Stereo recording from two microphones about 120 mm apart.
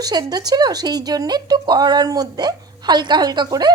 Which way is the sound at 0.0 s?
35° right (ahead or behind).